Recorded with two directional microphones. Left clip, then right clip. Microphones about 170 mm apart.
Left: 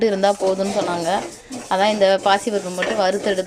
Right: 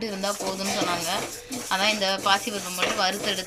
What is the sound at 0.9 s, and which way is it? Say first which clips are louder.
Speech: left 6 dB; 45° left (ahead or behind).